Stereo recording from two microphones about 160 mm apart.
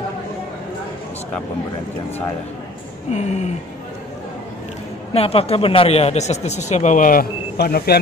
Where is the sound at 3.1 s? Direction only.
45° left (ahead or behind).